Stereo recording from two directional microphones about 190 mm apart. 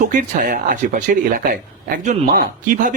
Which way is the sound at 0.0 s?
45° right (ahead or behind).